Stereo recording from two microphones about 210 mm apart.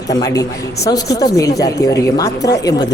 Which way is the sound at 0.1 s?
15° left (ahead or behind).